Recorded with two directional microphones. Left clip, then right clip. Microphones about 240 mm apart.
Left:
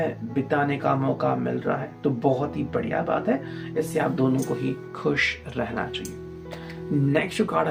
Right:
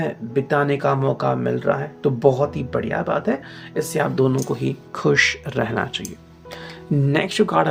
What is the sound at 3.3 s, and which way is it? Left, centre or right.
Speech, right.